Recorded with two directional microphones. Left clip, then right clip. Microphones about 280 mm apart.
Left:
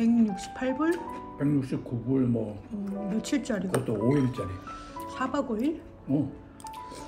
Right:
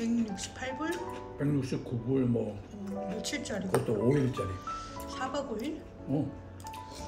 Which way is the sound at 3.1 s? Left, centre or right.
Centre.